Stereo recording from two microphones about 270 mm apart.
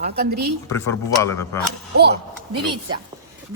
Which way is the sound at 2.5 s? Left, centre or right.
Centre.